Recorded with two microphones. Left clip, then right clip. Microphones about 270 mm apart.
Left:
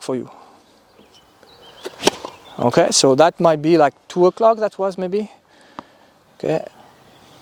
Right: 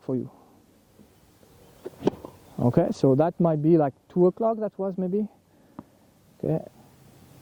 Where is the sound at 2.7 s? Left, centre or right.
Centre.